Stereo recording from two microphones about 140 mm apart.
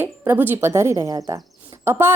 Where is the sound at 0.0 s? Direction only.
15° right (ahead or behind).